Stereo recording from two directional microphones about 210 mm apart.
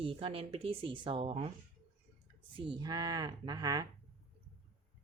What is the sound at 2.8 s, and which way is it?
A woman's voice, 20° right (ahead or behind).